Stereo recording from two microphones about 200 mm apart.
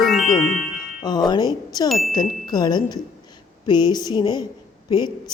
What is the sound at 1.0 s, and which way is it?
Speech, 20° left (ahead or behind).